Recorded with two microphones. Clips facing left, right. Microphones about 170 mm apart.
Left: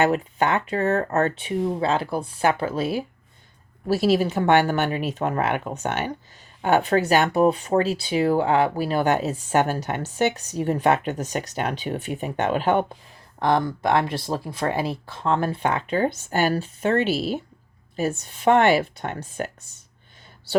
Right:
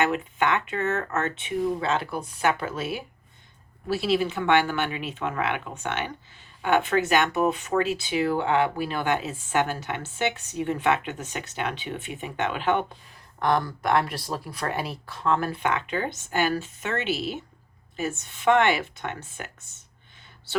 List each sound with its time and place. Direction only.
0.0 s speech: 35° left (ahead or behind)
13.4 s speech: 25° left (ahead or behind)